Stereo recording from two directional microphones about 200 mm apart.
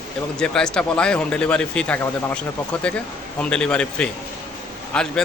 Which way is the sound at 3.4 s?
5° left (ahead or behind).